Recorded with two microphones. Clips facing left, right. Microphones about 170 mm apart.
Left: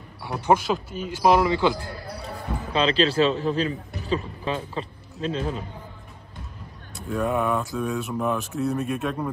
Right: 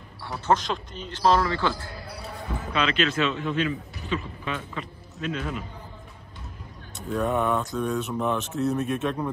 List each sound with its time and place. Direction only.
0.5 s a man's voice: 10° left (ahead or behind)
2.2 s a man's voice: 30° left (ahead or behind)
7.0 s speech: centre (ahead or behind)